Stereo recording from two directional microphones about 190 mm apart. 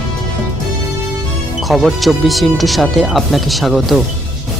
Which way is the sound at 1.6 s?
Centre (ahead or behind).